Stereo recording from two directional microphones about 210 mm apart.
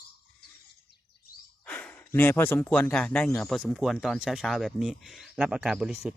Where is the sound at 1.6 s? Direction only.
5° left (ahead or behind).